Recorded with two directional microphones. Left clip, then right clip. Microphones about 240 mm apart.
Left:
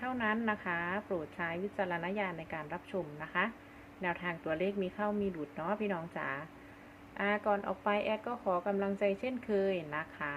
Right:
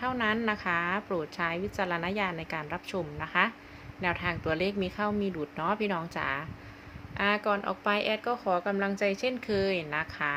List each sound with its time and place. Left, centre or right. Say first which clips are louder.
0.0 s a woman's voice: right 5 dB; right